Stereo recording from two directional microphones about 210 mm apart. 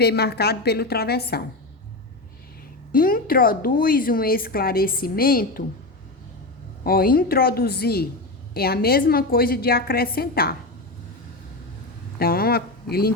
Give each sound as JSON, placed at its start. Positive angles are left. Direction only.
{"t": 0.0, "sound": "a woman's voice", "side_deg": 50}
{"t": 2.9, "sound": "a woman's voice", "side_deg": 45}
{"t": 6.8, "sound": "a woman's voice", "side_deg": 45}
{"t": 12.2, "sound": "a woman's voice", "side_deg": 45}